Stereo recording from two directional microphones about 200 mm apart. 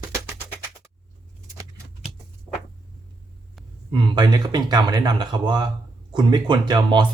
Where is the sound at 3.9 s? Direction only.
20° right (ahead or behind).